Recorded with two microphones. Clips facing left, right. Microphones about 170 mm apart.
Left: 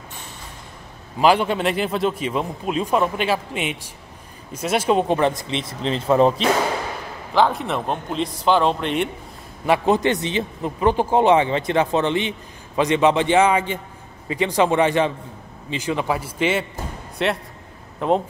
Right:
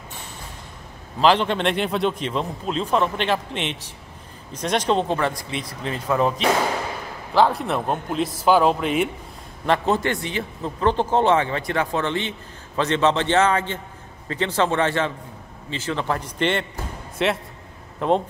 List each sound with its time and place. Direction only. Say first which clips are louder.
1.2 s speech: left 1 dB; 10° left (ahead or behind); by 6.4 s 30° left (ahead or behind)
7.3 s speech: even; centre (ahead or behind)
9.7 s speech: left 3 dB; 15° left (ahead or behind); by 18.2 s centre (ahead or behind)